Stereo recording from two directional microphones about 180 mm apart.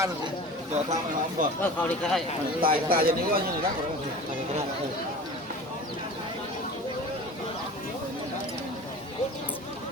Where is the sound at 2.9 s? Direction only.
55° right (ahead or behind).